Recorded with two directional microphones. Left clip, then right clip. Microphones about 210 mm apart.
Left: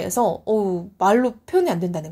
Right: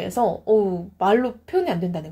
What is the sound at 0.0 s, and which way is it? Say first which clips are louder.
Speech: left 1 dB; 40° left (ahead or behind).